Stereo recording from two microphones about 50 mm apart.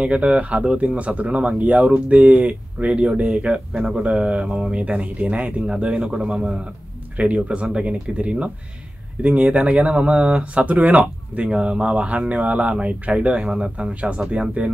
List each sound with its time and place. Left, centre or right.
0.0 s speech: right
7.2 s speech: right